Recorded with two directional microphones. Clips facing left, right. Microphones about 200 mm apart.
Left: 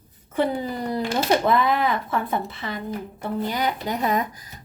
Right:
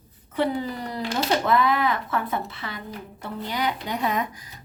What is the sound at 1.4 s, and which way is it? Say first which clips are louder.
Speech: left 1 dB; 50° left (ahead or behind).